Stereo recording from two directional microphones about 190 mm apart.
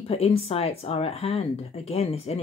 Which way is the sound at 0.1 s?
30° left (ahead or behind).